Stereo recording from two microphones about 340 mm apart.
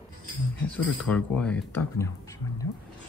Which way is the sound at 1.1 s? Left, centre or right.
Centre.